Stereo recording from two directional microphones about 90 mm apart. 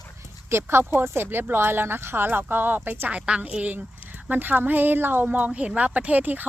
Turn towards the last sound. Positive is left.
turn(degrees=-20)  # may be behind; listen again after turning